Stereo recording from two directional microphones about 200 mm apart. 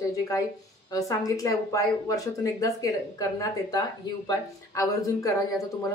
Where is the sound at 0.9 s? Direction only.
15° left (ahead or behind).